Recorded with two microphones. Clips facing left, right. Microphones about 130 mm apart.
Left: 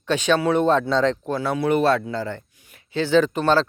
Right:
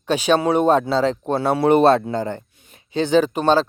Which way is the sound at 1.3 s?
30° right (ahead or behind).